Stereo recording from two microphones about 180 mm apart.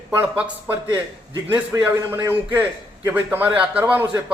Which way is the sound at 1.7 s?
10° right (ahead or behind).